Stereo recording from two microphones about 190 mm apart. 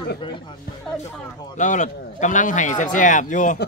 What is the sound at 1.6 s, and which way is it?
A man's voice, 40° left (ahead or behind).